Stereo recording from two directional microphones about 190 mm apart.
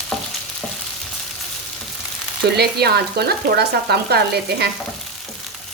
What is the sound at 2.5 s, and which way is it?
Frying, 60° right (ahead or behind).